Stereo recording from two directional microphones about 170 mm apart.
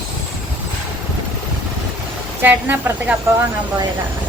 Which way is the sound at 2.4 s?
10° right (ahead or behind).